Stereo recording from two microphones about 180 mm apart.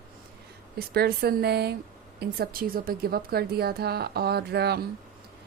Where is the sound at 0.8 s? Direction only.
60° right (ahead or behind).